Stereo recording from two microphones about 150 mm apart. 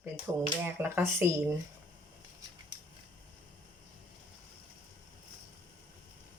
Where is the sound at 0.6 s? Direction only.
15° right (ahead or behind).